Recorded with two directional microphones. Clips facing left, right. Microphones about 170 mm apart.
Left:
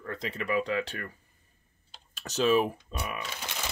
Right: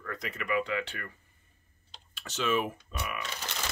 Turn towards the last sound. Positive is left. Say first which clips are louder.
# even
turn(degrees=10)  # may be behind; listen again after turning